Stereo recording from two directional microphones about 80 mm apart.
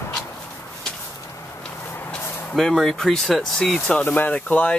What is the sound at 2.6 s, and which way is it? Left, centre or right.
Speech, centre.